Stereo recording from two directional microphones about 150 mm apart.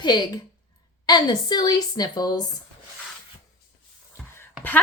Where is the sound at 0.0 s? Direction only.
30° left (ahead or behind).